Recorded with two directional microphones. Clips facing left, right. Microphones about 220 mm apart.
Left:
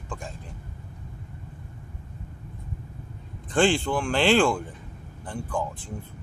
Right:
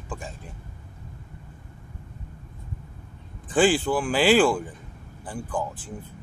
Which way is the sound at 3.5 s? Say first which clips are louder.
Right 2 dB; 5° right (ahead or behind).